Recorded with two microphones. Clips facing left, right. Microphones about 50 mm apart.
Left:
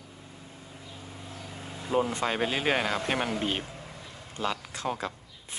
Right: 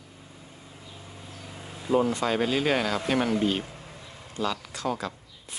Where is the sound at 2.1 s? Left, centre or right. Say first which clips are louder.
Right 3 dB; left.